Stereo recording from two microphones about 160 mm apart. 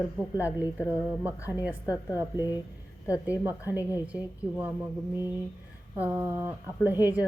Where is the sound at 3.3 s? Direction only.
10° right (ahead or behind).